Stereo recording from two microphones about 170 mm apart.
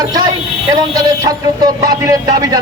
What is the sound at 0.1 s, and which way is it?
A man's voice, 20° right (ahead or behind).